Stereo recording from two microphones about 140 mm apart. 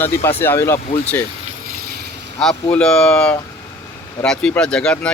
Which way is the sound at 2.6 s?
5° left (ahead or behind).